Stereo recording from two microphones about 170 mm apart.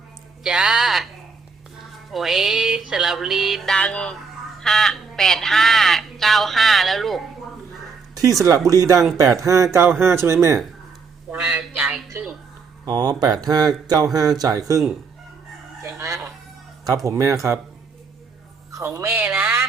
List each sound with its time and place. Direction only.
0.4 s speech: 5° right (ahead or behind)
2.1 s speech: centre (ahead or behind)
8.1 s speech: 20° right (ahead or behind)
11.3 s speech: 5° right (ahead or behind)
12.8 s speech: 25° right (ahead or behind)
15.8 s speech: 20° right (ahead or behind)
18.7 s speech: 15° right (ahead or behind)